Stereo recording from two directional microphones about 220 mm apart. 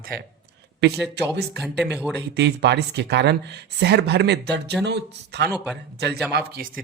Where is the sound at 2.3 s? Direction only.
50° right (ahead or behind).